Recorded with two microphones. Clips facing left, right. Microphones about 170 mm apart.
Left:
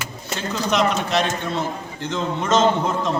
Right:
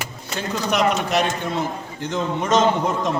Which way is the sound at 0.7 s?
10° right (ahead or behind).